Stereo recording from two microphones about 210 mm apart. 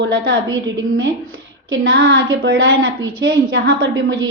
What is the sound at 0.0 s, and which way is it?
A woman's voice, 60° right (ahead or behind).